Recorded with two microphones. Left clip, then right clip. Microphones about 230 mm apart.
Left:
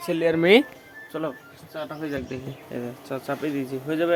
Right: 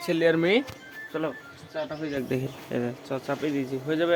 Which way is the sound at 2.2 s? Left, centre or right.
Right.